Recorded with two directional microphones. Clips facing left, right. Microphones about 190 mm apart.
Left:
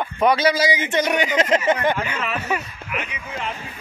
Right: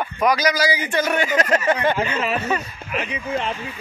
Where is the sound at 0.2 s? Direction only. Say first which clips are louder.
Left 2 dB; 30° left (ahead or behind); by 2.6 s 10° left (ahead or behind).